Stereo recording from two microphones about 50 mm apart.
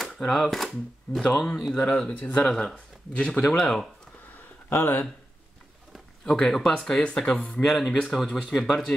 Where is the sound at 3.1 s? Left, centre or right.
Left.